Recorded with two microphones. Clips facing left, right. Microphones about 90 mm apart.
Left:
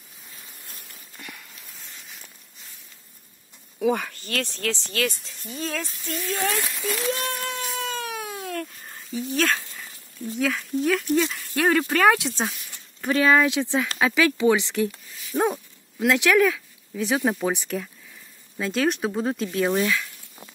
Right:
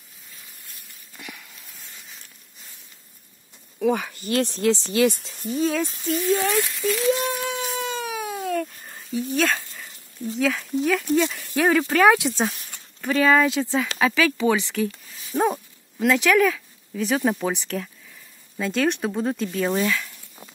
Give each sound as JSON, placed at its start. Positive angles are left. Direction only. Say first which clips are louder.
{"t": 1.1, "sound": "a sound", "louder": "right 2 dB", "side_deg": 0}
{"t": 3.8, "sound": "speech", "louder": "right 1 dB", "side_deg": 0}
{"t": 4.1, "sound": "speech", "louder": "right 6 dB", "side_deg": -15}
{"t": 5.5, "sound": "speech", "louder": "right 8 dB", "side_deg": -5}
{"t": 7.1, "sound": "speech", "louder": "right 6 dB", "side_deg": -10}
{"t": 7.4, "sound": "baby cry", "louder": "right 3 dB", "side_deg": 0}
{"t": 10.4, "sound": "speech", "louder": "right 1 dB", "side_deg": 0}